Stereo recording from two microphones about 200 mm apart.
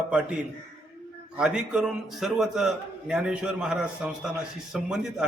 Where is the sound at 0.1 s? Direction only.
5° right (ahead or behind).